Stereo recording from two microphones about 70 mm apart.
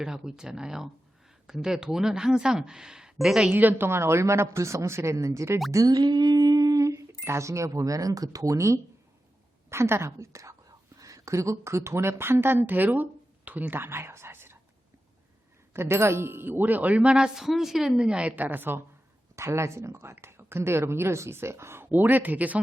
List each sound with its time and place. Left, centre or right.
0.0 s speech: centre
3.5 s speech: right
5.7 s plop: right
6.8 s speech: right
15.7 s speech: right
19.4 s speech: right